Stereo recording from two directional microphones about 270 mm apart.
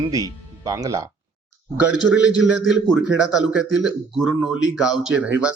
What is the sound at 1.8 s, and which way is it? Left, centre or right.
A man's voice, centre.